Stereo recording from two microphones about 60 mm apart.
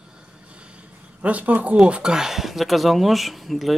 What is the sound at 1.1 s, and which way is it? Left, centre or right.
Speech, right.